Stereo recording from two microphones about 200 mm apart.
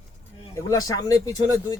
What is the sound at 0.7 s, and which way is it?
Speech, 15° left (ahead or behind).